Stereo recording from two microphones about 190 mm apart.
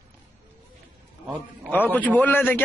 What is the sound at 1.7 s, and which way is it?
Speech, 10° left (ahead or behind).